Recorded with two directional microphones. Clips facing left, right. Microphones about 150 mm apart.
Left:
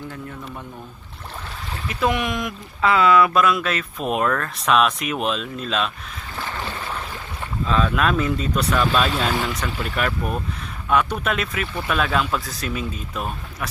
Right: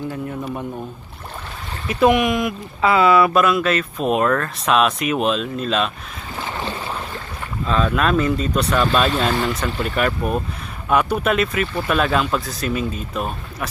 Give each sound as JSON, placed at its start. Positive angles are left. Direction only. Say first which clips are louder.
{"t": 1.9, "sound": "speech", "louder": "right 7 dB", "side_deg": -15}
{"t": 6.3, "sound": "boat", "louder": "right 3 dB", "side_deg": -20}
{"t": 7.7, "sound": "speech", "louder": "right 2 dB", "side_deg": 0}